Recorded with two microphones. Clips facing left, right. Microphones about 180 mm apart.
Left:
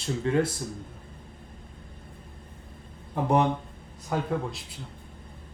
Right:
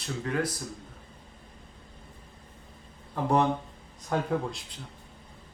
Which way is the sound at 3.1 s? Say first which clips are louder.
Left 1 dB; 20° left (ahead or behind).